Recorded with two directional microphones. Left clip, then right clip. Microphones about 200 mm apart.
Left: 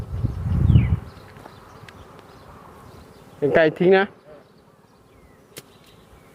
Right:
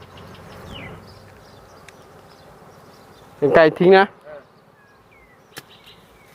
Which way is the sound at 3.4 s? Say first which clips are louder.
Right 4 dB; centre (ahead or behind).